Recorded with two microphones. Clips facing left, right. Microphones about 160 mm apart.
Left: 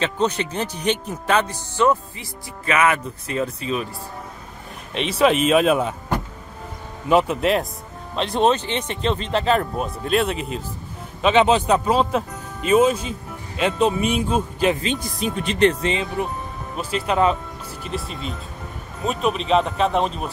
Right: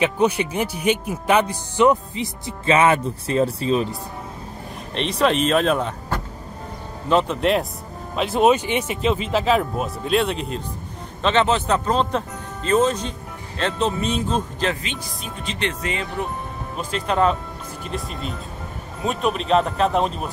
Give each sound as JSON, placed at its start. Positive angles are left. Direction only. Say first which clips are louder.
{"t": 0.0, "sound": "speech", "louder": "right 3 dB", "side_deg": -10}
{"t": 4.9, "sound": "speech", "louder": "left 2 dB", "side_deg": 5}
{"t": 11.2, "sound": "speech", "louder": "left 3 dB", "side_deg": 15}
{"t": 15.1, "sound": "speech", "louder": "left 8 dB", "side_deg": 80}
{"t": 15.8, "sound": "speech", "louder": "left 4 dB", "side_deg": 20}
{"t": 16.7, "sound": "speech", "louder": "left 1 dB", "side_deg": 5}